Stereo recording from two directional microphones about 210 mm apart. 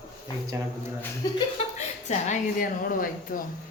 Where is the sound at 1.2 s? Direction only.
15° left (ahead or behind).